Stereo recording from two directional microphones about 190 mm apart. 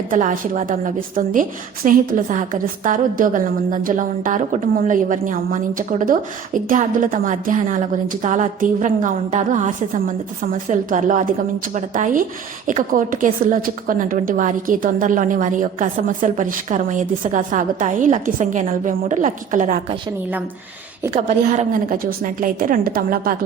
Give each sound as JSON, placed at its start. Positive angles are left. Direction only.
{"t": 0.1, "sound": "a woman's voice", "side_deg": -45}
{"t": 21.4, "sound": "a woman's voice", "side_deg": -40}